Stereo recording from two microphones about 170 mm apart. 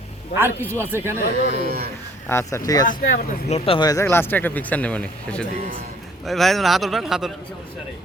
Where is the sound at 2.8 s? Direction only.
50° left (ahead or behind); by 3.9 s 35° left (ahead or behind).